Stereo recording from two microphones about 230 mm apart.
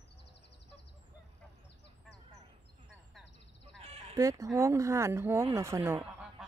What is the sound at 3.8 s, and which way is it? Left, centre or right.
Fowl, right.